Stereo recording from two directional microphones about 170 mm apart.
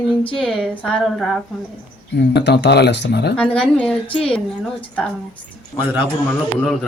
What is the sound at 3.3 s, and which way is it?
A woman's voice, 5° left (ahead or behind).